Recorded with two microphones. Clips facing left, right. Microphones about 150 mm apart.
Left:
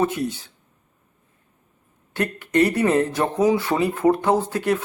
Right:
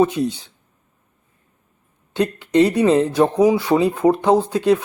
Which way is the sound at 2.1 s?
20° right (ahead or behind).